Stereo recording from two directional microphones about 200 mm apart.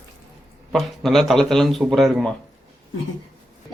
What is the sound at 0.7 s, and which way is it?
Speech, centre (ahead or behind).